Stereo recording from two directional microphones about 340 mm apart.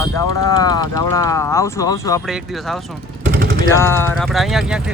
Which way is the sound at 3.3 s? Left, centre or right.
Right.